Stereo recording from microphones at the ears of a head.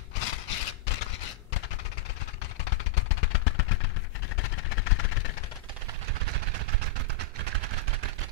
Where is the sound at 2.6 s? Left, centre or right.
Left.